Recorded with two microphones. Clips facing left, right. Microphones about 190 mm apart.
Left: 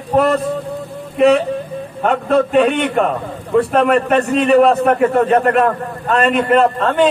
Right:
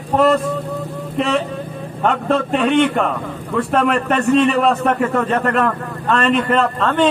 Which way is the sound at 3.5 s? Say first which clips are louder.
Left 4 dB; 35° left (ahead or behind).